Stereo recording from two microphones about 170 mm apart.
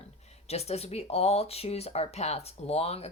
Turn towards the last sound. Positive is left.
turn(degrees=35)  # may be behind; listen again after turning